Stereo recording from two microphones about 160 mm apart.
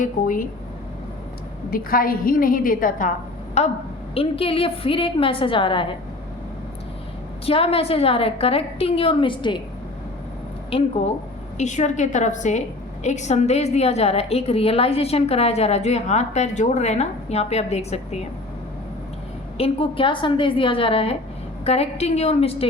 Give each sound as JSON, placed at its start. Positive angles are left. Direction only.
{"t": 0.0, "sound": "a woman's voice", "side_deg": 60}
{"t": 1.7, "sound": "a woman's voice", "side_deg": 65}
{"t": 3.6, "sound": "a woman's voice", "side_deg": 45}
{"t": 7.4, "sound": "a woman's voice", "side_deg": 35}
{"t": 10.7, "sound": "a woman's voice", "side_deg": 35}
{"t": 19.5, "sound": "a woman's voice", "side_deg": 35}